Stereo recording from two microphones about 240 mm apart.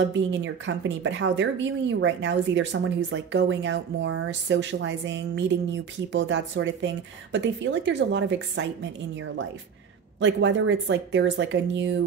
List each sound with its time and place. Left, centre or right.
0.1 s a woman's voice: right
10.2 s a woman's voice: right